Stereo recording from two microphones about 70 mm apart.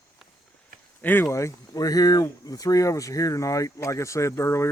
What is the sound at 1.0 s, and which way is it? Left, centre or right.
Speech, left.